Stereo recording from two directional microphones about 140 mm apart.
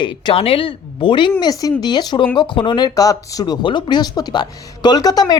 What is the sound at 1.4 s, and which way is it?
Speech, 25° left (ahead or behind).